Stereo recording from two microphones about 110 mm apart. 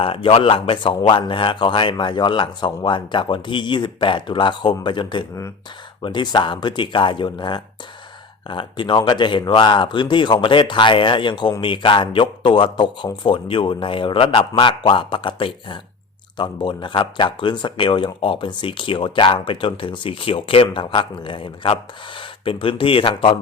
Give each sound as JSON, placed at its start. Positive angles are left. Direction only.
{"t": 0.0, "sound": "speech", "side_deg": 55}